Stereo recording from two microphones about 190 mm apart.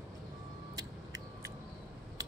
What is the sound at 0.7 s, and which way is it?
Vehicle, 20° right (ahead or behind).